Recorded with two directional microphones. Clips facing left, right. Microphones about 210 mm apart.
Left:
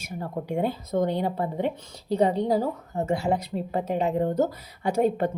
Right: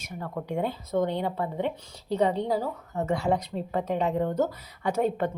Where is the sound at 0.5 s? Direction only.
35° left (ahead or behind).